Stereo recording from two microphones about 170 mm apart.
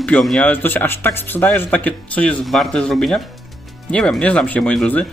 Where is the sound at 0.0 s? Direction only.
5° left (ahead or behind).